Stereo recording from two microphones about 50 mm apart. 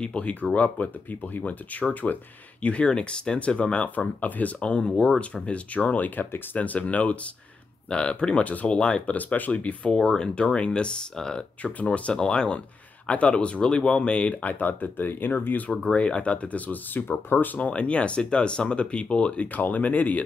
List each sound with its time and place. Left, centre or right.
0.0 s speech: left
9.9 s speech: centre
11.6 s speech: left
15.9 s speech: left
17.6 s speech: left